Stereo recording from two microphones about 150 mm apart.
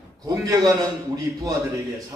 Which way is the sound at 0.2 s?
20° right (ahead or behind).